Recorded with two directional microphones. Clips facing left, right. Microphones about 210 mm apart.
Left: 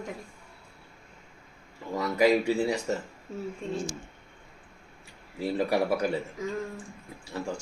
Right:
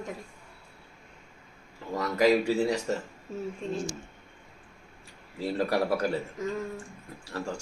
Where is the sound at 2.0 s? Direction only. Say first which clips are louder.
Even; 10° left (ahead or behind).